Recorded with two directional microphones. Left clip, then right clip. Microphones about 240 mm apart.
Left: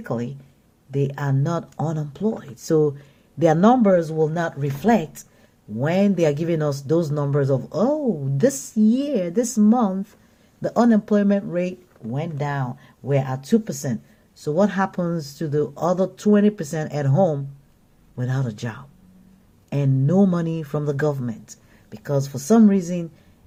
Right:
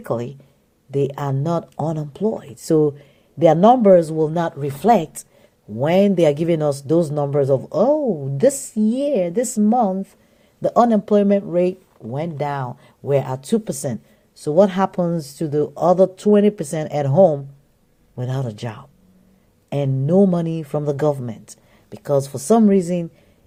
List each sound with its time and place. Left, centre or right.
0.0 s speech: right